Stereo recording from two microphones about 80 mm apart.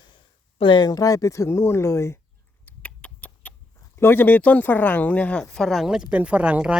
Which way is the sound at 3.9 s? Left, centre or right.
Left.